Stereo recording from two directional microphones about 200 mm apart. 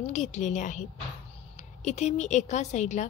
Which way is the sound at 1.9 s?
35° left (ahead or behind).